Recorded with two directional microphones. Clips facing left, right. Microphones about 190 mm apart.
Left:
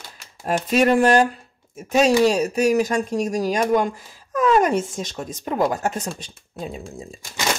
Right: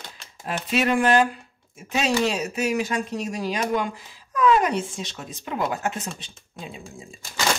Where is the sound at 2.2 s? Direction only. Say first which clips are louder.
Left 7 dB; 40° left (ahead or behind).